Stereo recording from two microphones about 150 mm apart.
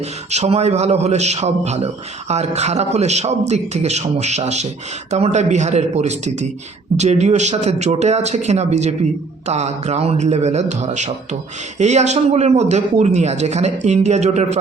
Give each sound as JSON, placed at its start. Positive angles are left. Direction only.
{"t": 0.3, "sound": "a man's voice", "side_deg": -45}